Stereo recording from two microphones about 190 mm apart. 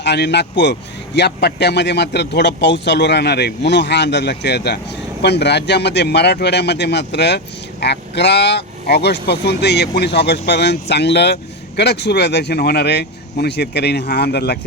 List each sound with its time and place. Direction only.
0.0 s a man's voice: 65° left (ahead or behind)